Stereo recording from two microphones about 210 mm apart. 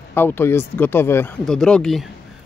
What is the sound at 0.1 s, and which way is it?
Speech, 10° left (ahead or behind).